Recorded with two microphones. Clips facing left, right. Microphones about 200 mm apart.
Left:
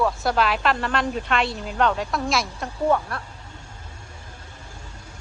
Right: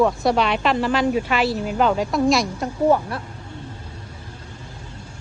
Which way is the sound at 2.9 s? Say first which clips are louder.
Right 2 dB; 25° right (ahead or behind).